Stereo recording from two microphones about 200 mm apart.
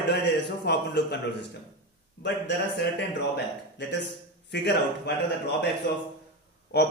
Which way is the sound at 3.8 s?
60° left (ahead or behind).